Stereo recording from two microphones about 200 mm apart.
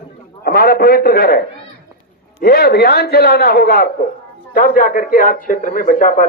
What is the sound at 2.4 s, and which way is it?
A man's voice, 50° left (ahead or behind).